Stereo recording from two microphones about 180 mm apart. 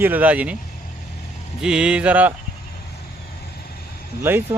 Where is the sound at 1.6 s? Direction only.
5° right (ahead or behind).